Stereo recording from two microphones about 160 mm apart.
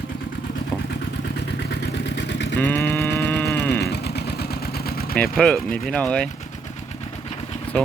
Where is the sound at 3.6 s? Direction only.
90° left; by 5.1 s 70° left (ahead or behind).